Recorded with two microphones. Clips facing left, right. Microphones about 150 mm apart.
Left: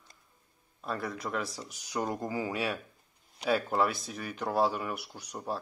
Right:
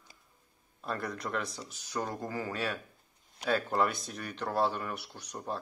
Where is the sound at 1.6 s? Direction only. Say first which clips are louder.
Left 3 dB; 15° left (ahead or behind).